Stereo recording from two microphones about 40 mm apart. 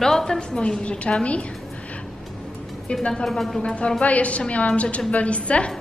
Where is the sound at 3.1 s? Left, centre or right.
Centre.